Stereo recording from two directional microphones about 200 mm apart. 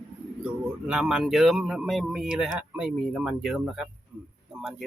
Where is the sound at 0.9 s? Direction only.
5° right (ahead or behind).